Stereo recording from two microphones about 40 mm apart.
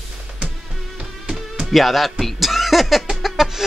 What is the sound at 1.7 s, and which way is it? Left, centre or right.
Speech, centre.